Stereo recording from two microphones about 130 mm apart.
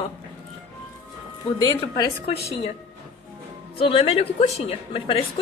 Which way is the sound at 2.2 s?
50° left (ahead or behind).